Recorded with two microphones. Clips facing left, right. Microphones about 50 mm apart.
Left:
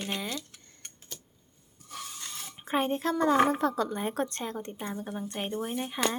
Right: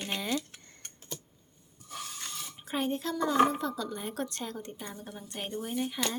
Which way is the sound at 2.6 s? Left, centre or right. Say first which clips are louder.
Left 4 dB; left.